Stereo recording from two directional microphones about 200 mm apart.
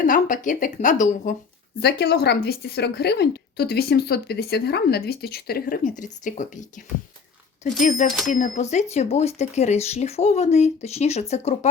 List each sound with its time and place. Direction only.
0.0 s speech: 40° left (ahead or behind)
1.8 s a woman's voice: 55° left (ahead or behind); by 11.7 s 35° left (ahead or behind)